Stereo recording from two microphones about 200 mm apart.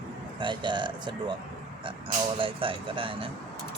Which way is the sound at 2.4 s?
25° right (ahead or behind).